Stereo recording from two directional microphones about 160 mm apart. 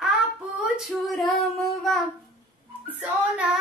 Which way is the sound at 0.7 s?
Centre (ahead or behind).